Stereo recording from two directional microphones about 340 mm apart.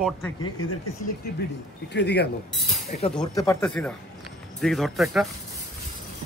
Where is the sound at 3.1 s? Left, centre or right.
Centre.